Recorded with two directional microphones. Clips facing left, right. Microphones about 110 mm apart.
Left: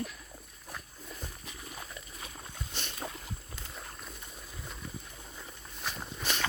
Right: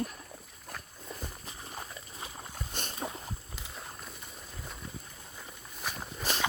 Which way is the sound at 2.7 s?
45° right (ahead or behind).